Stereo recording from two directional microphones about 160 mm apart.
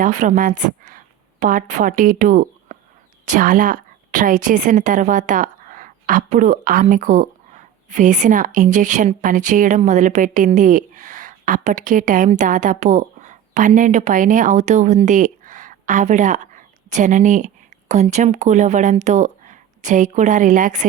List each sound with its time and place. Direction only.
0.0 s a woman's voice: 50° right (ahead or behind)